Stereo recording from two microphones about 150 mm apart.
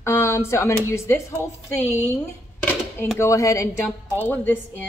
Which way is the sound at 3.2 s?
20° left (ahead or behind).